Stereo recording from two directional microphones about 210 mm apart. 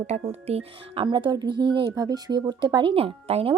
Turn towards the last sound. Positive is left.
turn(degrees=-25)  # may be behind; listen again after turning